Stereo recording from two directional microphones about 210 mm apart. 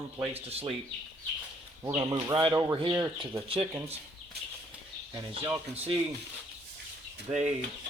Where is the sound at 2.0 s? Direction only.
20° right (ahead or behind).